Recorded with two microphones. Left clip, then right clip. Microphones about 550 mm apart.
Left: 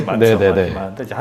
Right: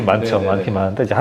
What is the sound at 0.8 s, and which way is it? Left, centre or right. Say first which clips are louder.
Speech: right 8 dB; right.